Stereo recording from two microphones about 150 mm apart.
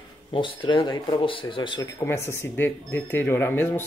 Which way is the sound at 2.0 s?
15° left (ahead or behind).